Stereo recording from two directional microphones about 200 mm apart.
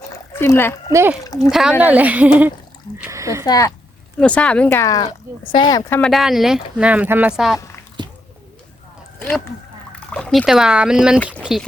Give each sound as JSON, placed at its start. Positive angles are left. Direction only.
{"t": 0.3, "sound": "speech", "side_deg": 10}
{"t": 0.9, "sound": "a woman's voice", "side_deg": -10}
{"t": 3.4, "sound": "speech", "side_deg": 20}
{"t": 4.2, "sound": "speech", "side_deg": 5}
{"t": 6.0, "sound": "speech", "side_deg": 0}
{"t": 9.1, "sound": "speech", "side_deg": 10}
{"t": 11.3, "sound": "a sound", "side_deg": 0}